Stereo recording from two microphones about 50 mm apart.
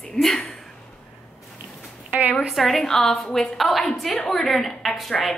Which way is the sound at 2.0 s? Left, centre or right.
Right.